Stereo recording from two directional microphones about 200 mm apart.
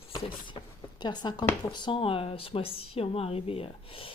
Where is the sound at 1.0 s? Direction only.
20° left (ahead or behind).